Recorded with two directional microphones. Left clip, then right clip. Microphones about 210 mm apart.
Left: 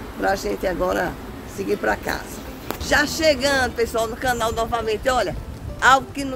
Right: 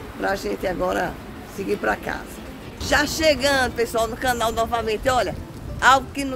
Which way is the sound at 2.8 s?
10° right (ahead or behind).